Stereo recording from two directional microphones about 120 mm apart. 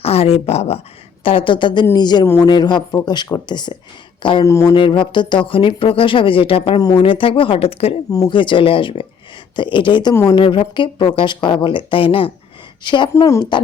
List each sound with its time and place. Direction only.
0.0 s speech: 55° left (ahead or behind)
1.2 s speech: 50° left (ahead or behind)
4.4 s speech: 25° left (ahead or behind)
4.7 s speech: 45° left (ahead or behind)
6.7 s speech: 35° left (ahead or behind)
7.0 s speech: 50° left (ahead or behind)
8.3 s speech: 45° left (ahead or behind)